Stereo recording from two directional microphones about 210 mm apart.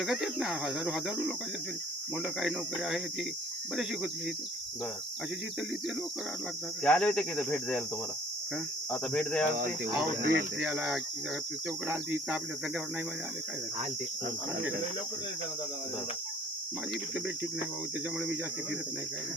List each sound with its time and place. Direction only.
0.0 s speech: centre (ahead or behind)
2.2 s speech: centre (ahead or behind)
6.8 s speech: 5° left (ahead or behind)
8.9 s speech: 5° left (ahead or behind)
10.2 s speech: 50° right (ahead or behind)
10.6 s speech: 5° right (ahead or behind)